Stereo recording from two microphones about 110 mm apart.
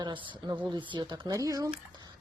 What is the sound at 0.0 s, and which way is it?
Speech, 40° right (ahead or behind).